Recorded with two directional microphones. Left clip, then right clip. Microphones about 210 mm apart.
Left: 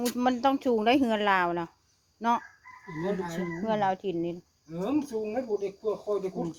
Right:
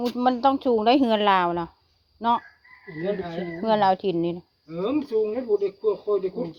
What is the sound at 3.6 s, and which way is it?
Speech, 35° right (ahead or behind).